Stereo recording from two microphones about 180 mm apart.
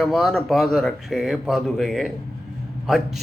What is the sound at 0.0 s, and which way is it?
Speech, centre (ahead or behind).